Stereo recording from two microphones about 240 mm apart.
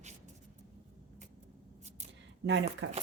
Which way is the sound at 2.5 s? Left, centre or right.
Right.